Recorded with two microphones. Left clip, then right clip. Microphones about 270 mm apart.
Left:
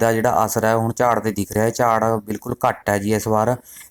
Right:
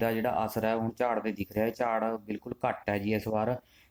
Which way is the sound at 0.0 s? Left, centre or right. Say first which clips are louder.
Left 12 dB; centre.